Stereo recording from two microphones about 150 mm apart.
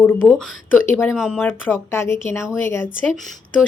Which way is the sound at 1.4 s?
15° left (ahead or behind).